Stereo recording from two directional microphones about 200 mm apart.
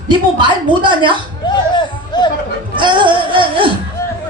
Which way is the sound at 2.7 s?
25° right (ahead or behind).